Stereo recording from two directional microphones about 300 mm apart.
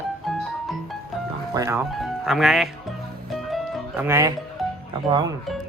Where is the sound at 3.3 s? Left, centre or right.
Centre.